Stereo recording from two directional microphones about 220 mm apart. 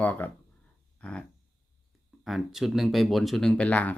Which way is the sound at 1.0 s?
5° left (ahead or behind).